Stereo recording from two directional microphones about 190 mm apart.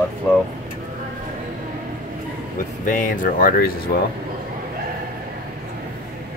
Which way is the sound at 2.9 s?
45° left (ahead or behind).